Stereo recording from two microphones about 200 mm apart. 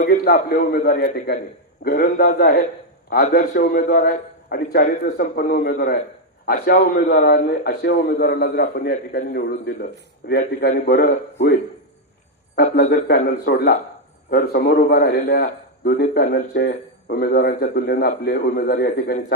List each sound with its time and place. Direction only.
0.0 s a man's voice: 45° left (ahead or behind)